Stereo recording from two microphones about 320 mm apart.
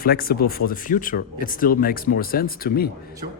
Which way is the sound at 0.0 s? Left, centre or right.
Left.